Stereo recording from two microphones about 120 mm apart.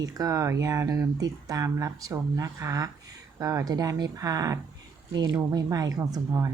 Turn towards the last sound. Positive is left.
turn(degrees=-25)  # may be behind; listen again after turning